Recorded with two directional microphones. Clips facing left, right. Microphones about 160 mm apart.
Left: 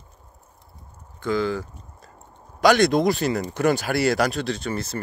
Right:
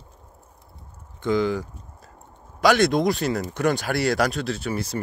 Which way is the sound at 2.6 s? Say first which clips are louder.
Left 1 dB; centre (ahead or behind).